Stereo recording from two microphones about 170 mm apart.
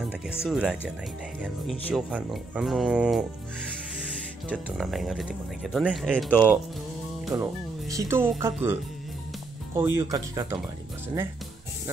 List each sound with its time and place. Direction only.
0.5 s speech: 5° right (ahead or behind)
2.0 s speech: 5° right (ahead or behind)
4.5 s speech: 5° right (ahead or behind)
7.3 s speech: 20° right (ahead or behind)
9.8 s speech: 15° right (ahead or behind)